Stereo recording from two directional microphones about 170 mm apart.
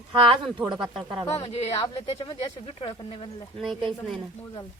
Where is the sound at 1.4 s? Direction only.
35° left (ahead or behind).